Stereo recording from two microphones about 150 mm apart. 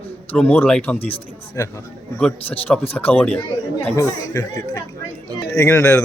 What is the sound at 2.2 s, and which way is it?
Speech, 5° left (ahead or behind).